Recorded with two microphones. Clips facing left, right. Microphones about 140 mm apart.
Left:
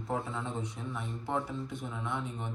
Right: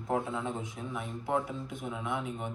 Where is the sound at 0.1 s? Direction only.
5° right (ahead or behind).